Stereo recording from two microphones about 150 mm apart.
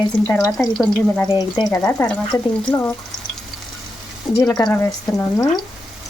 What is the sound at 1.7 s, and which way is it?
Speech, 20° left (ahead or behind).